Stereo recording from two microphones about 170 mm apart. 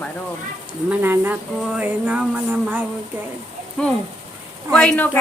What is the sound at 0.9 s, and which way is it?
Speech, 10° right (ahead or behind).